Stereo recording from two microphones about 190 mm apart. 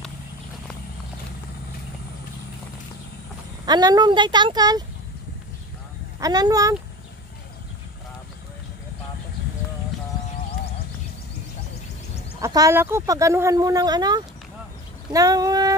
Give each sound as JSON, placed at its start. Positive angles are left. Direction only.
{"t": 3.6, "sound": "speech", "side_deg": -20}
{"t": 6.1, "sound": "speech", "side_deg": -20}
{"t": 12.4, "sound": "speech", "side_deg": -20}